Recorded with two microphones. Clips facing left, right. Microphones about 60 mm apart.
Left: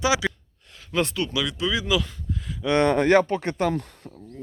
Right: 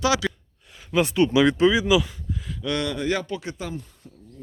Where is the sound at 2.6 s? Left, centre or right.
Left.